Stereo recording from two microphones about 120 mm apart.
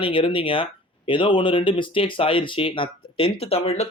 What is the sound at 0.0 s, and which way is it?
Speech, 45° left (ahead or behind).